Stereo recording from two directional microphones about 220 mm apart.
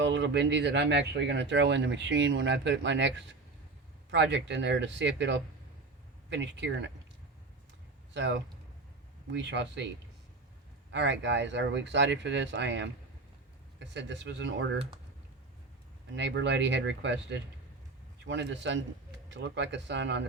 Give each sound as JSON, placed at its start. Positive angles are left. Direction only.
{"t": 0.0, "sound": "speech", "side_deg": -55}
{"t": 8.1, "sound": "a man's voice", "side_deg": -55}
{"t": 10.9, "sound": "speech", "side_deg": -55}
{"t": 16.1, "sound": "speech", "side_deg": -50}